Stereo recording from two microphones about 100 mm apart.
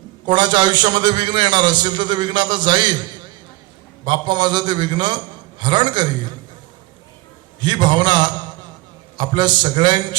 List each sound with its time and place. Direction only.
0.3 s a man's voice: 50° right (ahead or behind)
4.0 s a man's voice: 50° right (ahead or behind)
7.6 s a man's voice: 50° right (ahead or behind)